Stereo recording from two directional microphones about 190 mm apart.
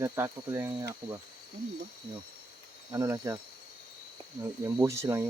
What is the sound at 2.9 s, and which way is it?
Speech, 15° right (ahead or behind).